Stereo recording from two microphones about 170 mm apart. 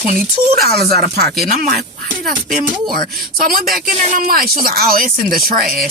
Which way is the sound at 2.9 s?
60° right (ahead or behind).